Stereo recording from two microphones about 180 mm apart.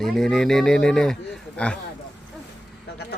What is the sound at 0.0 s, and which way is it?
Speech, centre (ahead or behind).